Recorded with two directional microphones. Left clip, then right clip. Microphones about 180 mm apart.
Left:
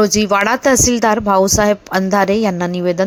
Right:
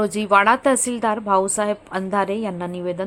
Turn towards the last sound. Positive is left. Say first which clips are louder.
# left 9 dB
turn(degrees=30)  # may be behind; listen again after turning